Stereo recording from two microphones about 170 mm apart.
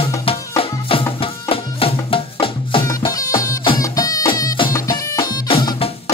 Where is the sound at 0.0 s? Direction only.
35° left (ahead or behind).